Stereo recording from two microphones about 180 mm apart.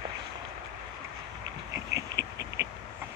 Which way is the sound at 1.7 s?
90° right.